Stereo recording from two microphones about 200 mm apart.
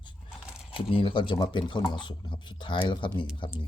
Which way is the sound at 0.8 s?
25° left (ahead or behind).